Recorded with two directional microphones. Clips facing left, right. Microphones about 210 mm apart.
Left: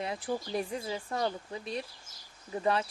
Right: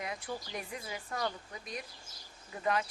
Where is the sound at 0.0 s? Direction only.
30° left (ahead or behind).